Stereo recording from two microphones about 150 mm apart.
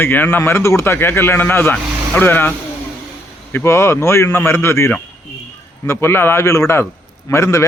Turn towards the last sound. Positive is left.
turn(degrees=20)  # may be behind; listen again after turning